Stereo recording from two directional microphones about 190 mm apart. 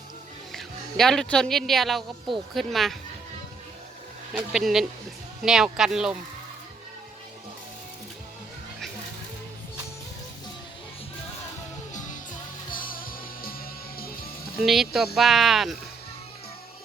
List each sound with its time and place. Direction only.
0.5 s speech: centre (ahead or behind)
4.4 s speech: centre (ahead or behind)
12.7 s music: 50° left (ahead or behind)
14.6 s speech: centre (ahead or behind)